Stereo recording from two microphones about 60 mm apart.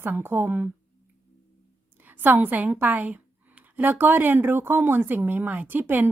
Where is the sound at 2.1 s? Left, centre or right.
Right.